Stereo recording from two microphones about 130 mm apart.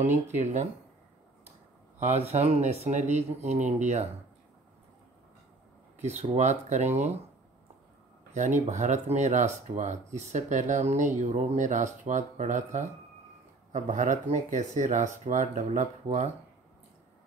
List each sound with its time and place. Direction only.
0.0 s speech: 70° right (ahead or behind)
2.0 s speech: 60° right (ahead or behind)
5.9 s speech: 60° right (ahead or behind)
8.3 s speech: 70° right (ahead or behind)